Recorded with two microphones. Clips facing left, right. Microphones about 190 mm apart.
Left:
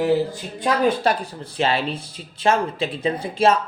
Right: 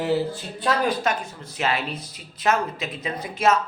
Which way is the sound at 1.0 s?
35° left (ahead or behind).